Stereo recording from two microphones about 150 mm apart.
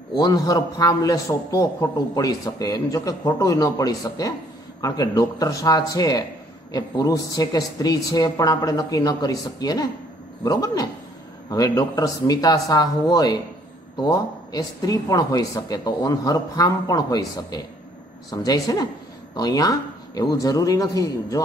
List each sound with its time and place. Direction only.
0.1 s a man's voice: 25° left (ahead or behind)